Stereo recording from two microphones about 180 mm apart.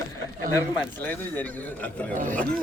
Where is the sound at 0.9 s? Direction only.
10° left (ahead or behind).